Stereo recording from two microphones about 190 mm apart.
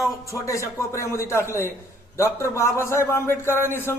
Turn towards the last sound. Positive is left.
turn(degrees=10)  # may be behind; listen again after turning